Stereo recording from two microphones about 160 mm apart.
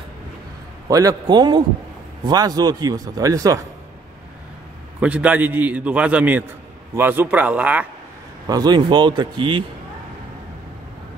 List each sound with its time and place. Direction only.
0.8 s a man's voice: 20° right (ahead or behind)
5.0 s a man's voice: 10° right (ahead or behind)
8.5 s a man's voice: 25° right (ahead or behind)